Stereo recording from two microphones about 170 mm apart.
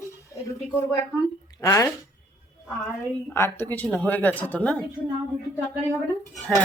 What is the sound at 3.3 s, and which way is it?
A woman's voice, 15° left (ahead or behind).